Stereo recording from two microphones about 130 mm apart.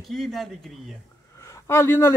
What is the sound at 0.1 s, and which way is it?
Speech, centre (ahead or behind).